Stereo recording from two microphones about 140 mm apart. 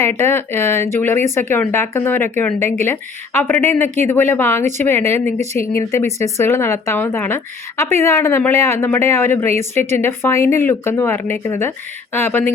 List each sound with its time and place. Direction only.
0.0 s speech: 15° left (ahead or behind)